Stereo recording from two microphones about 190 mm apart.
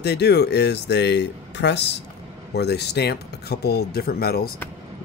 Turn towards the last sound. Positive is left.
turn(degrees=55)  # may be behind; listen again after turning